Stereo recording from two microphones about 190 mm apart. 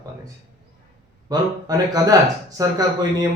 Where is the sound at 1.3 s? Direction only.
20° right (ahead or behind).